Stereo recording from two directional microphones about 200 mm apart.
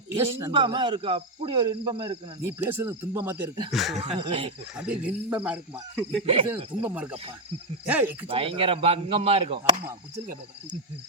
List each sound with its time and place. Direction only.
0.2 s speech: 15° right (ahead or behind)
2.6 s speech: 10° right (ahead or behind)
3.7 s speech: centre (ahead or behind)
4.2 s speech: 30° right (ahead or behind)
4.8 s speech: 5° right (ahead or behind)
6.2 s speech: 25° right (ahead or behind)
6.8 s speech: 5° right (ahead or behind)
8.3 s speech: 25° right (ahead or behind)